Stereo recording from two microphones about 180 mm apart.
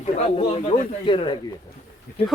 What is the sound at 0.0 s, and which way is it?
Speech, 35° left (ahead or behind).